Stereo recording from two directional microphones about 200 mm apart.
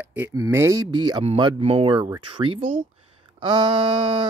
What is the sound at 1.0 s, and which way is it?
Speech, 25° right (ahead or behind).